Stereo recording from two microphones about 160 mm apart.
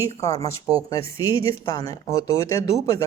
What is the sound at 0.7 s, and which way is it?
Speech, 20° left (ahead or behind).